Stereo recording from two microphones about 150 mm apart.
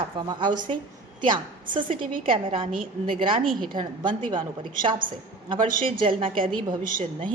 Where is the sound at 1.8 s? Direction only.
65° right (ahead or behind).